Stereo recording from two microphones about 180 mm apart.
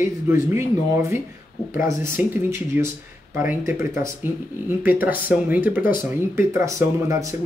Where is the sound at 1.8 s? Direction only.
15° right (ahead or behind).